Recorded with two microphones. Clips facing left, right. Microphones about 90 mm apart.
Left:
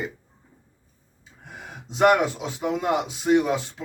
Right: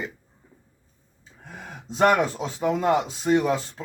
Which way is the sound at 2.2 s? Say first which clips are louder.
Right 1 dB; 40° right (ahead or behind).